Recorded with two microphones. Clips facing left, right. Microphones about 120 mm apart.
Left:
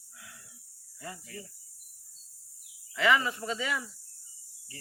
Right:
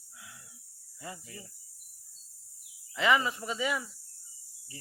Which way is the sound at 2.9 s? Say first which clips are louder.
Even; 20° right (ahead or behind).